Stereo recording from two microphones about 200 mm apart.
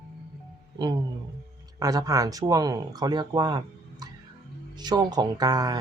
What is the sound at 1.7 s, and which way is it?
Speech, 20° right (ahead or behind).